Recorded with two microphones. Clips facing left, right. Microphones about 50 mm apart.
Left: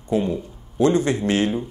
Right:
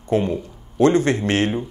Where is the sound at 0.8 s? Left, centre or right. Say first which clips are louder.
Right 2 dB; right.